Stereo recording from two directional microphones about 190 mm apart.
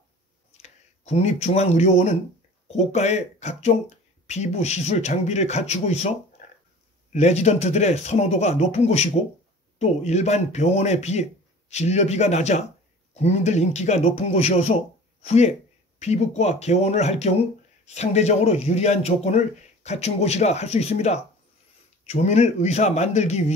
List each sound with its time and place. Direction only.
0.6 s speech: 35° left (ahead or behind)
6.4 s a sound: 40° left (ahead or behind)
7.1 s speech: 35° left (ahead or behind)